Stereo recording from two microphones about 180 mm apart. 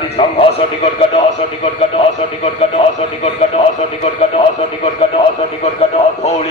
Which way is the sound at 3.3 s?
35° left (ahead or behind).